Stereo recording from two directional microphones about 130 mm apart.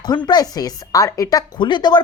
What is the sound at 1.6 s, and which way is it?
Speech, 35° left (ahead or behind).